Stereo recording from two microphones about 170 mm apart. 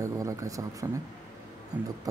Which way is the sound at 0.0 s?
20° right (ahead or behind).